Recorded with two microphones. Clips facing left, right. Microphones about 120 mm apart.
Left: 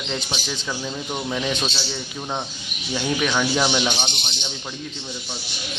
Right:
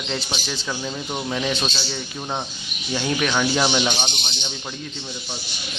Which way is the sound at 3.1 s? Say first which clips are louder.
Even; 5° right (ahead or behind).